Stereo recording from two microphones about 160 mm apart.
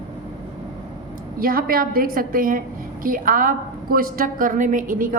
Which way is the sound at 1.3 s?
65° right (ahead or behind).